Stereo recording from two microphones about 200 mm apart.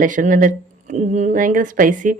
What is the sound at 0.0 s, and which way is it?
Speech, 40° right (ahead or behind).